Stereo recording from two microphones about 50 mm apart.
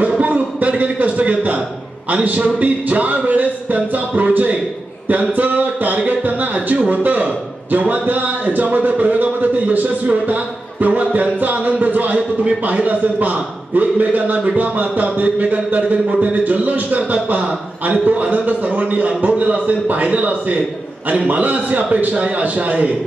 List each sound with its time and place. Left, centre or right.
0.2 s a sound: right
0.9 s a man's voice: right
12.4 s a man's voice: right